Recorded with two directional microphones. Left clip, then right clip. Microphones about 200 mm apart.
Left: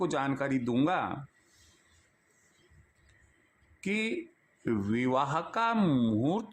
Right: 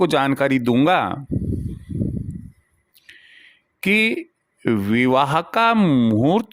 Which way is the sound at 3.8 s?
45° right (ahead or behind).